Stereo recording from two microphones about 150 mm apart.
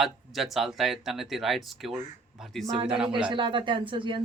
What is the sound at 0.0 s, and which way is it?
Speech, centre (ahead or behind).